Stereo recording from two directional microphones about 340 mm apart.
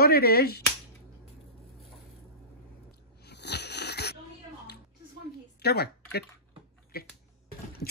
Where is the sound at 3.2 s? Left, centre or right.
Left.